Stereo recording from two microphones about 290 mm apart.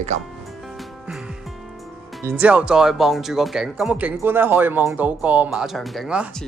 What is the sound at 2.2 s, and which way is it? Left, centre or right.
Speech, centre.